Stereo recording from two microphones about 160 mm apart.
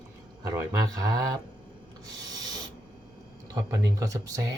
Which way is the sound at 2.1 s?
25° right (ahead or behind).